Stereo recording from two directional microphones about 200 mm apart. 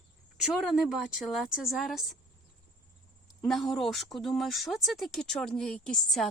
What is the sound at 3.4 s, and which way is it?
Speech, centre (ahead or behind).